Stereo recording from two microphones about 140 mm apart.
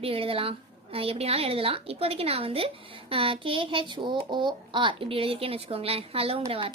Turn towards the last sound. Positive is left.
turn(degrees=-40)  # may be behind; listen again after turning